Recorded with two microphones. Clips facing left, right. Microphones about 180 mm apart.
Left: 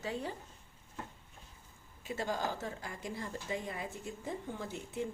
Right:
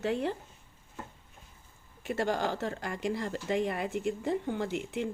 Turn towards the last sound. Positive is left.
turn(degrees=-80)